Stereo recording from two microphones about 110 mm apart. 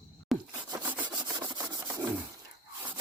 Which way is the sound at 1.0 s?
40° right (ahead or behind).